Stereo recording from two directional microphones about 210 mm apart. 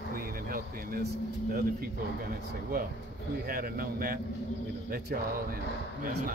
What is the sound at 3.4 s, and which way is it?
Speech, 45° right (ahead or behind).